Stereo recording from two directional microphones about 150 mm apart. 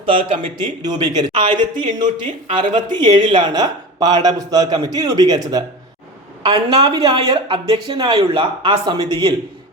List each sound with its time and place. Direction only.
0.0 s speech: 35° right (ahead or behind)
6.4 s speech: 40° right (ahead or behind)